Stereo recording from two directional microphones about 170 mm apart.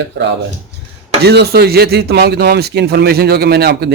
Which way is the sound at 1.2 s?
75° right (ahead or behind).